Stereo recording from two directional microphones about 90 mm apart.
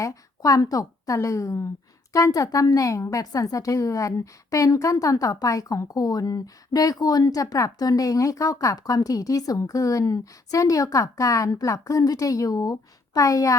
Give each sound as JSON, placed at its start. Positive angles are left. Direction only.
{"t": 0.0, "sound": "a woman's voice", "side_deg": 40}